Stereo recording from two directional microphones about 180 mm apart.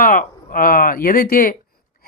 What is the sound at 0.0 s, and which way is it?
Speech, 50° left (ahead or behind).